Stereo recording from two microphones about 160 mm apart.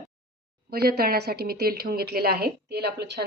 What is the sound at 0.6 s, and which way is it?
A woman's voice, 75° right (ahead or behind).